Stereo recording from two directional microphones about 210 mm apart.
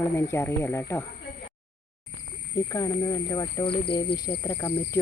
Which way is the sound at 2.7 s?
15° left (ahead or behind).